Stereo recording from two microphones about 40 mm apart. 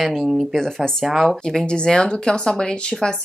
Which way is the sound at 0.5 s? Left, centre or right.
Centre.